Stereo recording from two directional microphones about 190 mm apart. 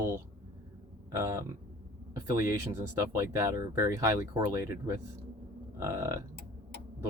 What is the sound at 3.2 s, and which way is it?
Speech, 15° right (ahead or behind).